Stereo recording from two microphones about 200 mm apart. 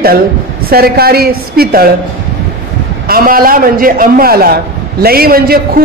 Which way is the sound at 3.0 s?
45° right (ahead or behind).